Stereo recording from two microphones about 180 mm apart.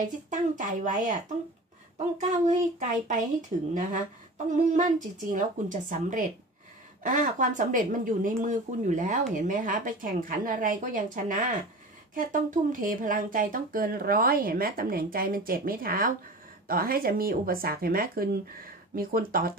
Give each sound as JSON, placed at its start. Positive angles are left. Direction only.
{"t": 0.0, "sound": "speech", "side_deg": -45}